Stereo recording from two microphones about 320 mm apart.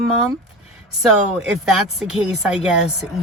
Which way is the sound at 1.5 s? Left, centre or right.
Centre.